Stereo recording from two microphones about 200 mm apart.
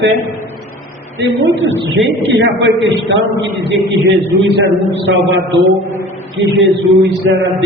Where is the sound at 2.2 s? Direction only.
65° right (ahead or behind).